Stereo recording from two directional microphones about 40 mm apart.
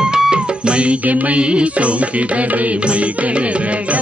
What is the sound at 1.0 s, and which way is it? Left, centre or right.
Music, right.